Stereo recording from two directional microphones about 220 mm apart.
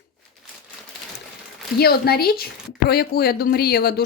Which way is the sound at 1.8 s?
45° left (ahead or behind).